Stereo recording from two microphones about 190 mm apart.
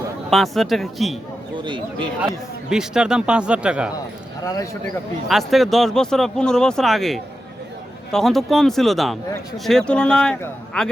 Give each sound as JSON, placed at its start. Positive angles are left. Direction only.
{"t": 0.3, "sound": "speech", "side_deg": 0}
{"t": 1.6, "sound": "speech", "side_deg": -25}
{"t": 2.2, "sound": "speech", "side_deg": -5}
{"t": 4.4, "sound": "speech", "side_deg": 15}
{"t": 5.3, "sound": "speech", "side_deg": 0}